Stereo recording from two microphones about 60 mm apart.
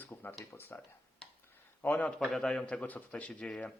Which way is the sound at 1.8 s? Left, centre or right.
Left.